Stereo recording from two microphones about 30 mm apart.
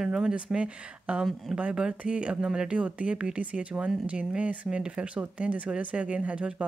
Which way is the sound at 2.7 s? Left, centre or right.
Right.